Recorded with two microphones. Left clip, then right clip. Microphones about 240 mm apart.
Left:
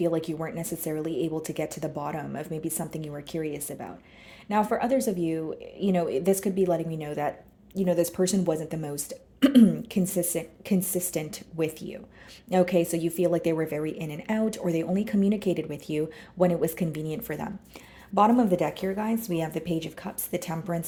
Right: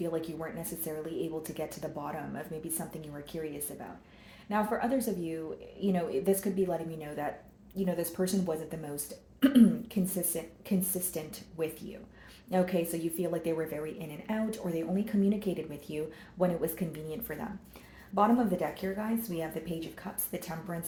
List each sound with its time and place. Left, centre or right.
0.0 s a woman's voice: left